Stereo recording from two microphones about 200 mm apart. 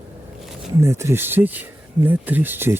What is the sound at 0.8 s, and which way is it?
Speech, 15° right (ahead or behind).